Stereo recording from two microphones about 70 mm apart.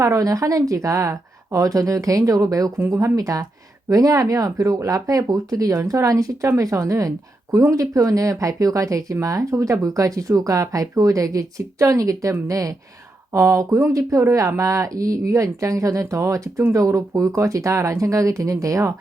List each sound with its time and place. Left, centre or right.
0.0 s speech: right